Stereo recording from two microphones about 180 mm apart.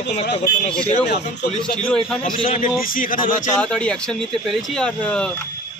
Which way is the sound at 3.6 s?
5° left (ahead or behind).